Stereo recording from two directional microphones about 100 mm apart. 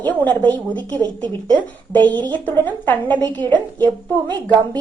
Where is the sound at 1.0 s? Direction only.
45° right (ahead or behind).